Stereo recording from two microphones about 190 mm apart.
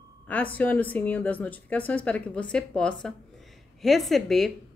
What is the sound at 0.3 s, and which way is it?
A woman's voice, 10° left (ahead or behind).